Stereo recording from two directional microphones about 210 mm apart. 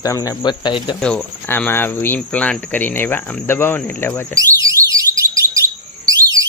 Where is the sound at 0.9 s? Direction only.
5° left (ahead or behind).